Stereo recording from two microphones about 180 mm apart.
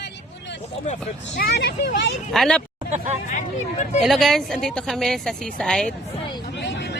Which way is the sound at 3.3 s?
40° left (ahead or behind).